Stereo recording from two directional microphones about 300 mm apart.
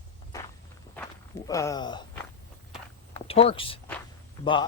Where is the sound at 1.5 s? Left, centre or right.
Centre.